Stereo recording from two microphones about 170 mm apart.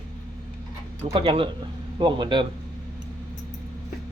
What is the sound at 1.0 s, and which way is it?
Speech, 30° right (ahead or behind).